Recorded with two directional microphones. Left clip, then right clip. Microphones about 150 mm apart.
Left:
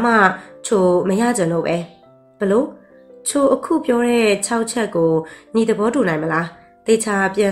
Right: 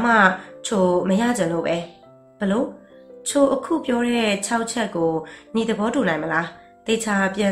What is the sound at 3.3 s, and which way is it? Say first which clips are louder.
Speech: left 3 dB; 45° left (ahead or behind).